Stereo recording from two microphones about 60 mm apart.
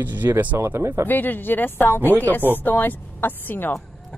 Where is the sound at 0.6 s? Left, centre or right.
Right.